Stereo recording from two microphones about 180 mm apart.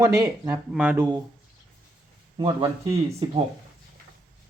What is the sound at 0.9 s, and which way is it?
Speech, 20° right (ahead or behind).